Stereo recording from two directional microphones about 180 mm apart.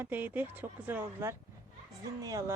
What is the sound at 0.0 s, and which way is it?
Speech, 10° right (ahead or behind).